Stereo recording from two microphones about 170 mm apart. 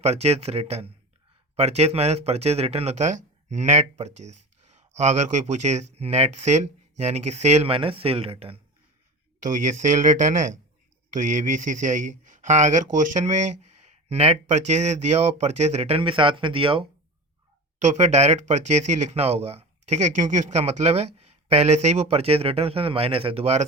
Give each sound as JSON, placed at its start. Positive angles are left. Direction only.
{"t": 0.0, "sound": "speech", "side_deg": -40}
{"t": 9.4, "sound": "speech", "side_deg": -45}
{"t": 17.7, "sound": "speech", "side_deg": -40}